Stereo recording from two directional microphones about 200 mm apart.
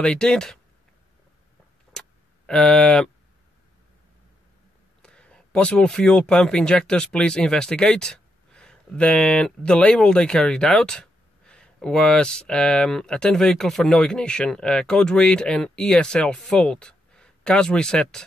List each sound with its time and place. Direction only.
0.0 s speech: 5° left (ahead or behind)
2.0 s a sound: 5° left (ahead or behind)
5.0 s speech: 5° left (ahead or behind)